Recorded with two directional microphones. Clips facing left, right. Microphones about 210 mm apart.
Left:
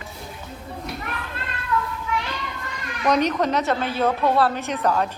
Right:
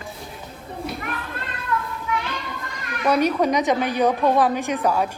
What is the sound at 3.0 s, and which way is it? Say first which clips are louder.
A woman's voice: right 1 dB; 10° right (ahead or behind).